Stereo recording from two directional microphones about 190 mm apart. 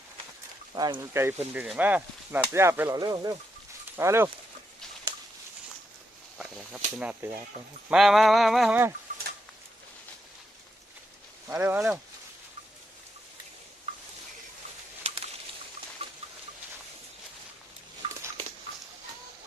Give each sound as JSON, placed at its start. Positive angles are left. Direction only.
{"t": 0.7, "sound": "speech", "side_deg": -20}
{"t": 6.9, "sound": "speech", "side_deg": -5}
{"t": 7.9, "sound": "a sound", "side_deg": 0}
{"t": 11.4, "sound": "speech", "side_deg": -10}
{"t": 15.1, "sound": "a sound", "side_deg": -35}
{"t": 18.0, "sound": "dog", "side_deg": -25}